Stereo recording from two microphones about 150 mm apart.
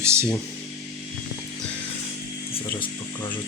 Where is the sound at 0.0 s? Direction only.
20° right (ahead or behind).